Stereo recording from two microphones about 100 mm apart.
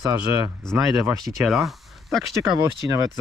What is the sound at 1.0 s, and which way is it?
Speech, 30° right (ahead or behind).